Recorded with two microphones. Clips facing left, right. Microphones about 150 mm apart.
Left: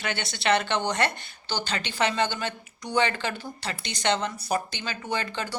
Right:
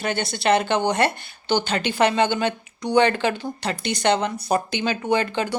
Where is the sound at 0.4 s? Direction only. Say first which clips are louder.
Right 5 dB; 50° right (ahead or behind).